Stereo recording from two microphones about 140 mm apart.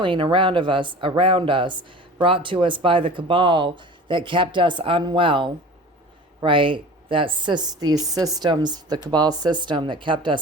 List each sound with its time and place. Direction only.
0.0 s speech: 35° right (ahead or behind)